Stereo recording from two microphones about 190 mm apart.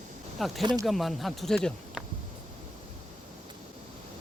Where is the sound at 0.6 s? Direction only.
25° right (ahead or behind).